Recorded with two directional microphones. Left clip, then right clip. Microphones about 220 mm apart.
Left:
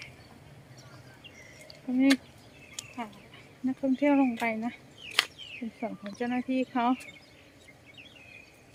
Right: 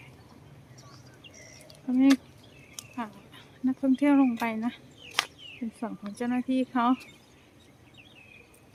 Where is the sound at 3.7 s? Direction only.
5° right (ahead or behind).